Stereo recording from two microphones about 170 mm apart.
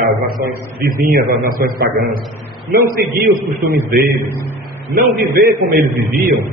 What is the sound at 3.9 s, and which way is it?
A man's voice, 60° right (ahead or behind).